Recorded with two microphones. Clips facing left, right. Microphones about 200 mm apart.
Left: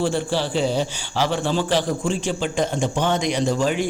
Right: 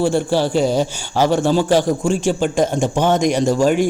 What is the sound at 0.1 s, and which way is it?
Speech, 45° right (ahead or behind).